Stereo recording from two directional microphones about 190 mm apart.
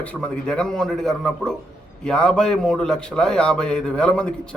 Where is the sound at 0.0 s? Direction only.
5° left (ahead or behind).